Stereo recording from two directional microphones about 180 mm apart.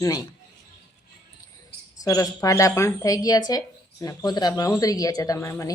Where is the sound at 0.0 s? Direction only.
20° left (ahead or behind).